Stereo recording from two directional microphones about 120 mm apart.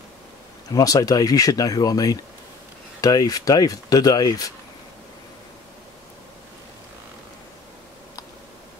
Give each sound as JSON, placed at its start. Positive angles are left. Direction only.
{"t": 0.7, "sound": "speech", "side_deg": 30}